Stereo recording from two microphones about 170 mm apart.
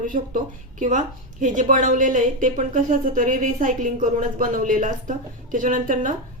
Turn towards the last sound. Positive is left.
turn(degrees=-50)  # may be behind; listen again after turning